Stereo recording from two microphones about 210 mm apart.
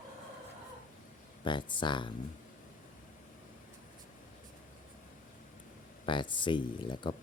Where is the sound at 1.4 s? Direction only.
20° left (ahead or behind).